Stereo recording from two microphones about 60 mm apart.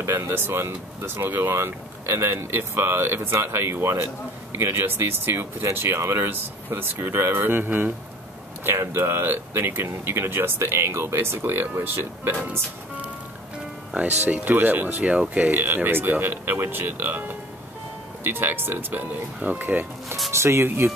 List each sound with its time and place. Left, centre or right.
0.0 s speech: right
13.9 s speech: right
15.0 s speech: centre
15.5 s speech: right
20.2 s speech: right